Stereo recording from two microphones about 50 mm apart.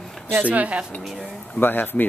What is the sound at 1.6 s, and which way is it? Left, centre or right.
Speech, left.